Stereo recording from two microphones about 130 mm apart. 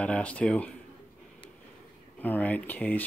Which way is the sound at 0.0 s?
10° left (ahead or behind).